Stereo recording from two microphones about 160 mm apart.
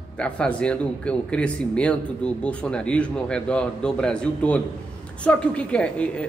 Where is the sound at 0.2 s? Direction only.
5° left (ahead or behind).